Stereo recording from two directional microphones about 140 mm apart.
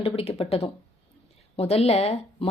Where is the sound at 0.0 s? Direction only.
45° left (ahead or behind).